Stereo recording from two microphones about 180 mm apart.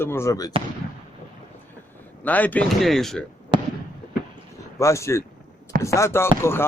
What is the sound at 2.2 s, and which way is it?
Speech, 10° left (ahead or behind).